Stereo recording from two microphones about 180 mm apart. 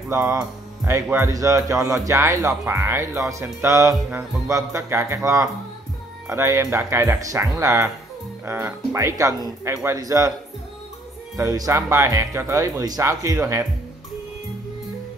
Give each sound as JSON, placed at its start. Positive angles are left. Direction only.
{"t": 0.1, "sound": "a man's voice", "side_deg": -15}
{"t": 11.3, "sound": "speech", "side_deg": -20}